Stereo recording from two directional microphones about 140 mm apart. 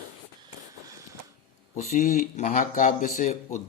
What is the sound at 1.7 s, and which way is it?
Speech, 55° left (ahead or behind).